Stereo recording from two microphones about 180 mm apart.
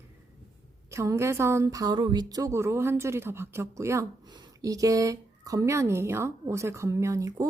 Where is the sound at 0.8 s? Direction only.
15° right (ahead or behind).